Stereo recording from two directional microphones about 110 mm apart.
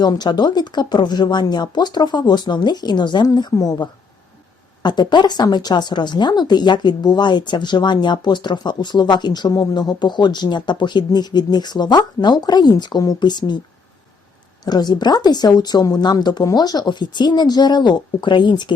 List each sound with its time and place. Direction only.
0.0 s a woman's voice: 40° left (ahead or behind)
14.6 s a woman's voice: 40° left (ahead or behind)